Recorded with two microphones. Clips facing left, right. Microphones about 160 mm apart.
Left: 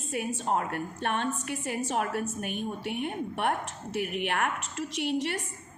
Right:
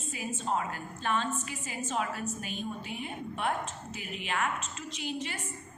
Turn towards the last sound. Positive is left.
turn(degrees=65)  # may be behind; listen again after turning